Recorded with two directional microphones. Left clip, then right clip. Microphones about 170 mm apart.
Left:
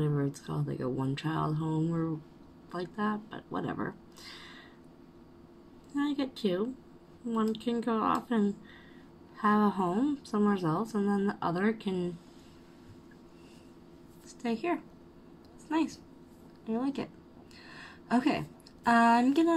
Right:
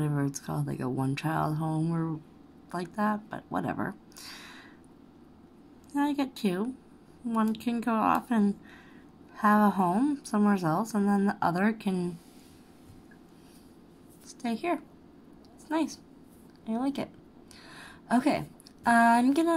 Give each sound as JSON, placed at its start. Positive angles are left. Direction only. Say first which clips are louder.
{"t": 0.0, "sound": "a woman's voice", "louder": "right 1 dB", "side_deg": -45}
{"t": 5.9, "sound": "a woman's voice", "louder": "right 3 dB", "side_deg": -45}
{"t": 14.4, "sound": "speech", "louder": "right 1 dB", "side_deg": -25}
{"t": 16.6, "sound": "speech", "louder": "right 2 dB", "side_deg": -25}
{"t": 17.6, "sound": "a sound", "louder": "right 3 dB", "side_deg": -25}